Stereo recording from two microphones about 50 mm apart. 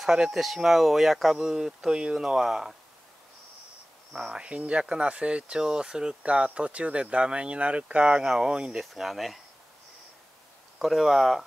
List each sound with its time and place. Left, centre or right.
0.0 s speech: centre
4.1 s speech: centre
8.2 s speech: centre
8.9 s speech: centre
10.8 s speech: centre